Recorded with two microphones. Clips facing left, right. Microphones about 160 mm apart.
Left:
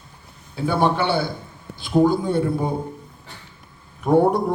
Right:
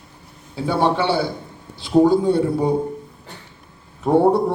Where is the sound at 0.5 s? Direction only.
25° right (ahead or behind).